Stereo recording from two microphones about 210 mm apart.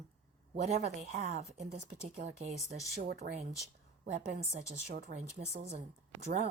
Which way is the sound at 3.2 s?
55° right (ahead or behind).